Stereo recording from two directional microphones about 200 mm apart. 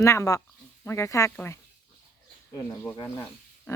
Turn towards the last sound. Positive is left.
turn(degrees=10)  # may be behind; listen again after turning